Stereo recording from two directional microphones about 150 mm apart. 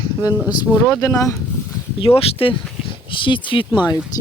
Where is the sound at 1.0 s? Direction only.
20° left (ahead or behind).